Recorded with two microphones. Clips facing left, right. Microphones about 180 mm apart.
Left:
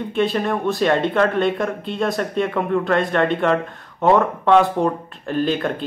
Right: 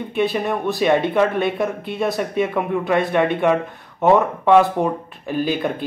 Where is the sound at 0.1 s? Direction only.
5° right (ahead or behind).